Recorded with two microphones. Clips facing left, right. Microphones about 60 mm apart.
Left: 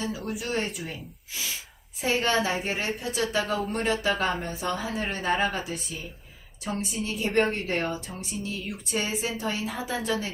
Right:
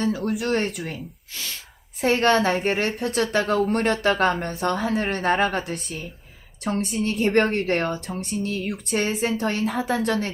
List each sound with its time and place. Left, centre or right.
0.3 s a woman's voice: right
2.0 s a woman's voice: right